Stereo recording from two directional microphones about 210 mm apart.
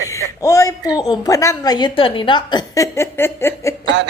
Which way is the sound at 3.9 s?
60° right (ahead or behind).